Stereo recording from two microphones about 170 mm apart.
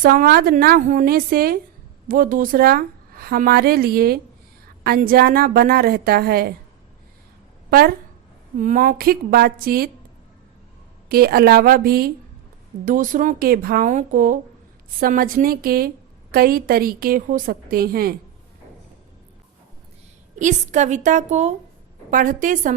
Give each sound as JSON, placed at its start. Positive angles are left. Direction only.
{"t": 0.0, "sound": "speech", "side_deg": -55}
{"t": 7.7, "sound": "speech", "side_deg": -60}
{"t": 8.5, "sound": "speech", "side_deg": -50}
{"t": 11.1, "sound": "speech", "side_deg": -60}
{"t": 20.4, "sound": "speech", "side_deg": -45}